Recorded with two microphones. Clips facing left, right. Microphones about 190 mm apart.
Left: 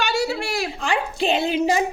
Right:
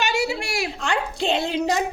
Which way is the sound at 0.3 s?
10° right (ahead or behind).